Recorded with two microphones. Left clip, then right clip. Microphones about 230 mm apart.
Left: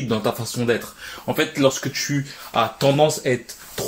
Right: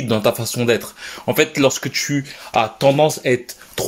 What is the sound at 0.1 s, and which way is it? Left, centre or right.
Speech, right.